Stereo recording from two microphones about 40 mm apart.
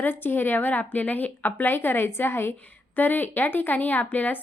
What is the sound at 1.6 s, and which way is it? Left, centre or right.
Speech, left.